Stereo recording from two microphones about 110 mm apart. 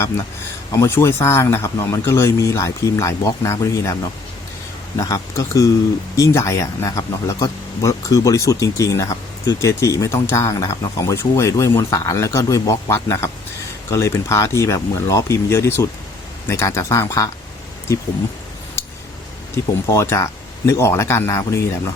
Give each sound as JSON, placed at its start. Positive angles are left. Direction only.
{"t": 0.7, "sound": "speech", "side_deg": 25}
{"t": 19.6, "sound": "speech", "side_deg": 25}